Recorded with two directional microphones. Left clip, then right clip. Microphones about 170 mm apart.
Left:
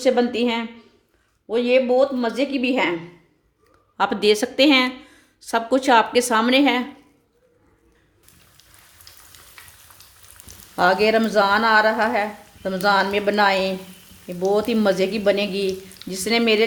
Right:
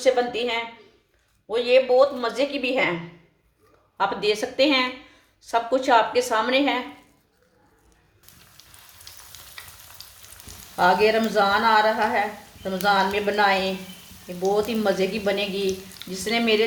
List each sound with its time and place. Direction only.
0.0 s a woman's voice: 55° left (ahead or behind)
3.9 s a woman's voice: 70° left (ahead or behind)
10.8 s a woman's voice: 70° left (ahead or behind)